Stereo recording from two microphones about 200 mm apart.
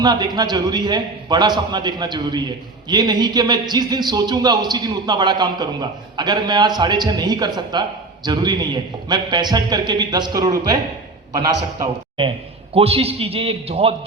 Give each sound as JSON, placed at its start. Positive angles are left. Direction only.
{"t": 0.0, "sound": "a man's voice", "side_deg": -20}